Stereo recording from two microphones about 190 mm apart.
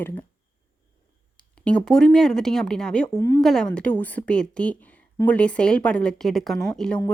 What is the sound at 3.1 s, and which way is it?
Speech, 15° left (ahead or behind).